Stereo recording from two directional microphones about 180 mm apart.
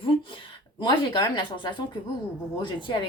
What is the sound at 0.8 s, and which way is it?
Speech, 25° left (ahead or behind).